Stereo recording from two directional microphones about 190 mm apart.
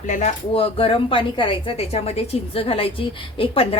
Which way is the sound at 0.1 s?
40° left (ahead or behind).